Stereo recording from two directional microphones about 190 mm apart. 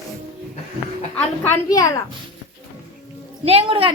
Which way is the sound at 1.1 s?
10° left (ahead or behind).